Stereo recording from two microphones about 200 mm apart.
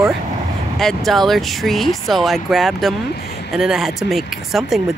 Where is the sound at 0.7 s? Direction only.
Centre (ahead or behind).